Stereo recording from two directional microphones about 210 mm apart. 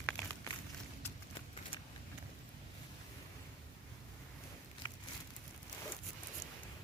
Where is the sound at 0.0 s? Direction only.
10° left (ahead or behind).